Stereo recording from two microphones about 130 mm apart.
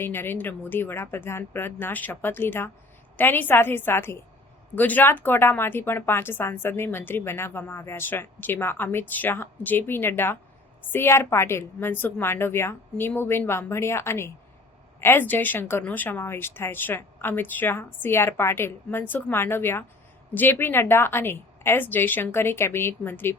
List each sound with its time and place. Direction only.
0.0 s a woman's voice: 15° left (ahead or behind)